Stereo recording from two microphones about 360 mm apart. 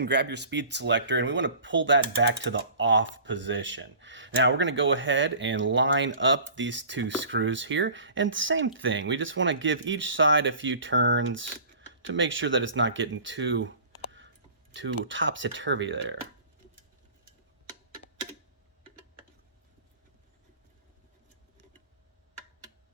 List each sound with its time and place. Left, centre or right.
0.0 s speech: right